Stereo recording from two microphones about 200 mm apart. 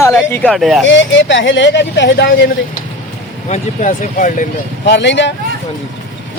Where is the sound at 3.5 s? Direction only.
40° left (ahead or behind).